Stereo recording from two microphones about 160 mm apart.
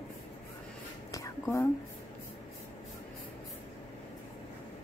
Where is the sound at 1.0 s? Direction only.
20° left (ahead or behind).